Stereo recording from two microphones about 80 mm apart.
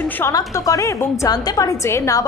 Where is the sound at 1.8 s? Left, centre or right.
Left.